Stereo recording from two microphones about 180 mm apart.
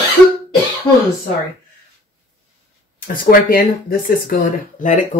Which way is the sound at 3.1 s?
50° left (ahead or behind).